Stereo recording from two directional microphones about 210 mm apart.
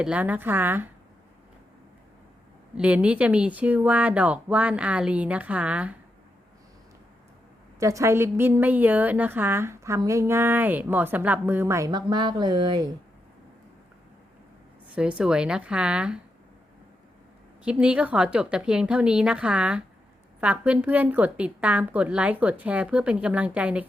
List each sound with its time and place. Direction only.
0.0 s a woman's voice: 5° right (ahead or behind)
2.7 s a woman's voice: 5° right (ahead or behind)
7.8 s a woman's voice: 15° right (ahead or behind)
14.9 s a woman's voice: 5° right (ahead or behind)
17.6 s a woman's voice: 5° right (ahead or behind)